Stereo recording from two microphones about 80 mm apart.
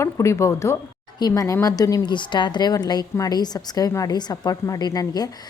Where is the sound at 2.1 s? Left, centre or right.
Left.